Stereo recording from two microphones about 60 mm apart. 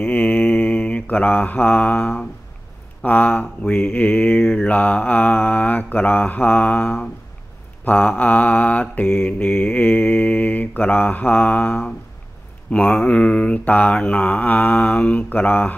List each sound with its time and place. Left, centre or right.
0.0 s mantra: left